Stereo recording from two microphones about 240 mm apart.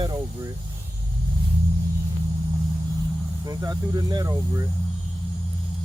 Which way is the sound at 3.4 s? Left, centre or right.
Centre.